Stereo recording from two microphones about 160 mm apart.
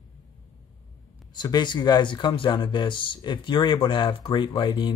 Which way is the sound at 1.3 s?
25° left (ahead or behind).